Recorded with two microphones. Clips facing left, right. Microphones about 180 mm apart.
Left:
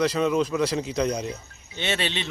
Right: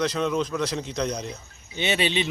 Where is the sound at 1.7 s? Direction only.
5° right (ahead or behind).